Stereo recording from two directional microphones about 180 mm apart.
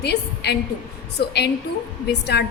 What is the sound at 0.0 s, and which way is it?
A woman's voice, 65° left (ahead or behind).